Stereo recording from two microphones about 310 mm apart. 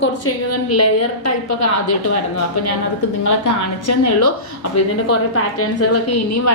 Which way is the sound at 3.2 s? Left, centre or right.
Left.